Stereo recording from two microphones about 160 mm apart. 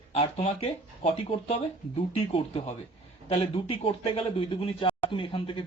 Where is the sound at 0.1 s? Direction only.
40° left (ahead or behind).